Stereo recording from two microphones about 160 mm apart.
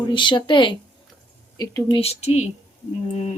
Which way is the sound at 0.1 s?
30° left (ahead or behind).